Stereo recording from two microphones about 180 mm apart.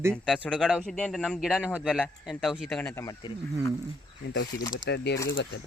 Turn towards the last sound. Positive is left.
turn(degrees=90)